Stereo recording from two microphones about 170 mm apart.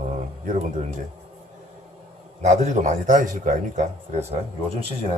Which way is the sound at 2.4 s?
45° right (ahead or behind).